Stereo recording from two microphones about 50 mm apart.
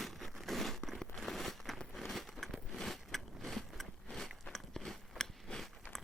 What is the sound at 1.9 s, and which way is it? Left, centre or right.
Biting, centre.